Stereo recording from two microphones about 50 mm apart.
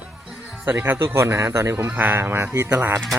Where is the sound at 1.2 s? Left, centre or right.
Right.